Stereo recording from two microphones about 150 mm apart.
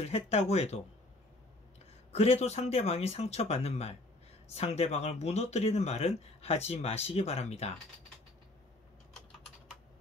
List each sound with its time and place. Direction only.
0.0 s speech: 45° left (ahead or behind)
2.1 s speech: 45° left (ahead or behind)